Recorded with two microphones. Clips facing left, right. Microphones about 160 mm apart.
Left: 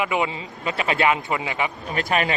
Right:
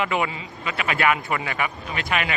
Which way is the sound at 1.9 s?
40° left (ahead or behind).